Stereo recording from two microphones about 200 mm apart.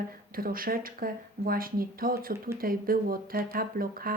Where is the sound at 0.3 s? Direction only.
45° right (ahead or behind).